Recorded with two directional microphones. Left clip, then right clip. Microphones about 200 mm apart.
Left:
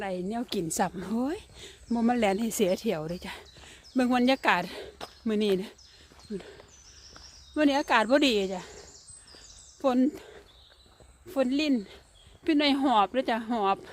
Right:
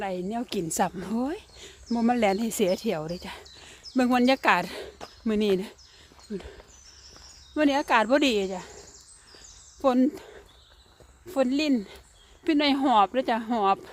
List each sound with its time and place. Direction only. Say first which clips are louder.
0.0 s speech: right 2 dB; 10° right (ahead or behind)
9.4 s a sound: right 3 dB; 20° right (ahead or behind)
11.3 s speech: right 2 dB; 25° right (ahead or behind)
12.5 s speech: right 2 dB; 15° right (ahead or behind)